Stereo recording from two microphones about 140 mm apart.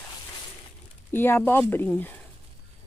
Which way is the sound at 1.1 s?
15° left (ahead or behind).